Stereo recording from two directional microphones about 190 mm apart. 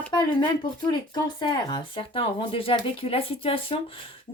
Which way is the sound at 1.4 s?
25° left (ahead or behind).